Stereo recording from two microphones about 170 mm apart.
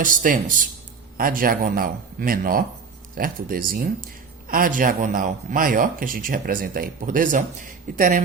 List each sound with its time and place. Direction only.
0.0 s a man's voice: 50° right (ahead or behind)